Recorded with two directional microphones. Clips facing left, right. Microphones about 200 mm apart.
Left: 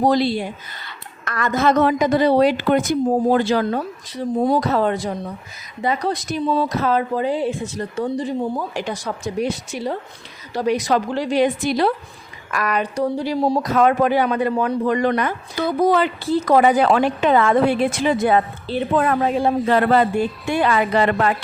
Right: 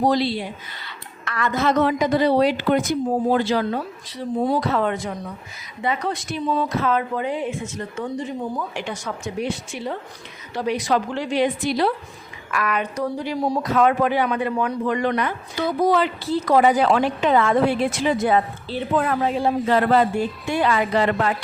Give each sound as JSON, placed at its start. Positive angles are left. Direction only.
{"t": 0.1, "sound": "speech", "side_deg": 45}
{"t": 13.6, "sound": "a woman's voice", "side_deg": 40}